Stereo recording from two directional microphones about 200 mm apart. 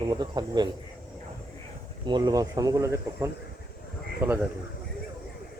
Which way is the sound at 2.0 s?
20° right (ahead or behind).